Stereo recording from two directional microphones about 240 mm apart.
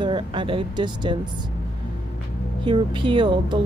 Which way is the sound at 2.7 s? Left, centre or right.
Centre.